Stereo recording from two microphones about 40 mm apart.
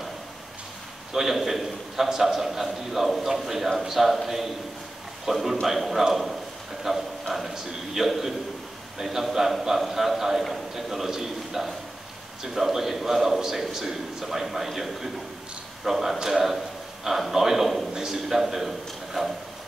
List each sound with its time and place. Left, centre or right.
1.1 s a man's voice: centre